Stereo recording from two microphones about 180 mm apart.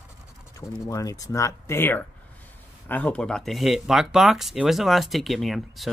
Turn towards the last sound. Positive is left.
turn(degrees=0)  # may be behind; listen again after turning